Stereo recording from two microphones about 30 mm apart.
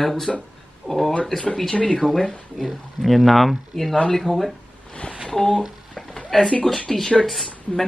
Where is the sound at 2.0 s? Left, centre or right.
Centre.